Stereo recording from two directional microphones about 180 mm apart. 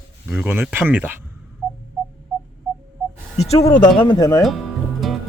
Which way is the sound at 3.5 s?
20° left (ahead or behind).